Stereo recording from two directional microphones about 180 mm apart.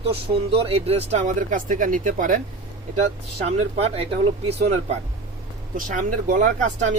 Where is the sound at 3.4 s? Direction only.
35° right (ahead or behind).